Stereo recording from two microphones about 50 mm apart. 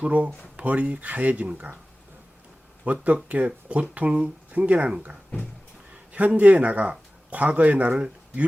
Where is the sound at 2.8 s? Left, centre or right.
Right.